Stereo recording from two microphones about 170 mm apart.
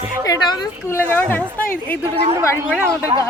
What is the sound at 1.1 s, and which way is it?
Speech, 10° left (ahead or behind).